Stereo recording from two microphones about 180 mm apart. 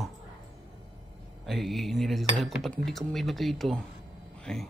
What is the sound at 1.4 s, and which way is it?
A man's voice, centre (ahead or behind).